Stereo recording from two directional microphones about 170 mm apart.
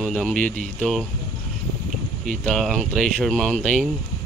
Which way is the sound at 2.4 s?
5° left (ahead or behind).